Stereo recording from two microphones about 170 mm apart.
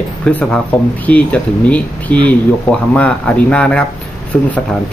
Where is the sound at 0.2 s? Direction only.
5° left (ahead or behind).